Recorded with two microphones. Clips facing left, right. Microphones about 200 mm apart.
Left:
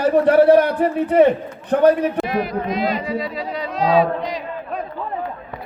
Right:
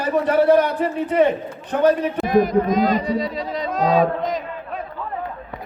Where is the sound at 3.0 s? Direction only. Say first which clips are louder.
Right 2 dB; centre (ahead or behind).